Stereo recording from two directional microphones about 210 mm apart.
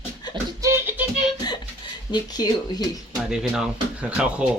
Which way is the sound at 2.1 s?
20° left (ahead or behind).